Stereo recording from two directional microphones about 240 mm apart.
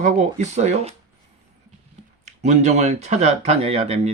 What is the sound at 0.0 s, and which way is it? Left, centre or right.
Speech, right.